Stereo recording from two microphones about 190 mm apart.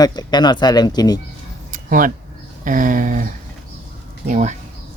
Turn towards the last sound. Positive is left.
turn(degrees=-40)  # may be behind; listen again after turning